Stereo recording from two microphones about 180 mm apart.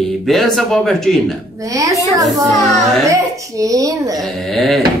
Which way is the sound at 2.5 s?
Centre (ahead or behind).